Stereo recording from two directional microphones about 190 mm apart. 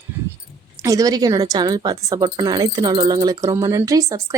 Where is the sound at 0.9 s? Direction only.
20° right (ahead or behind).